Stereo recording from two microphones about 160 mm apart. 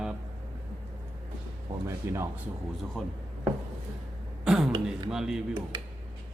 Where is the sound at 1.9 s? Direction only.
15° right (ahead or behind).